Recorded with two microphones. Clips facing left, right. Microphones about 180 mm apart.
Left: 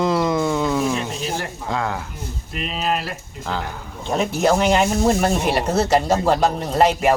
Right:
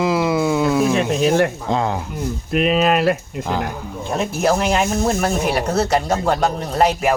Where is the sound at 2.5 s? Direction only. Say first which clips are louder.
Right 8 dB; 65° right (ahead or behind).